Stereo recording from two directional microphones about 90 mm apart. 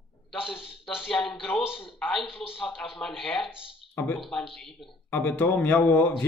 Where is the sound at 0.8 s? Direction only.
5° left (ahead or behind).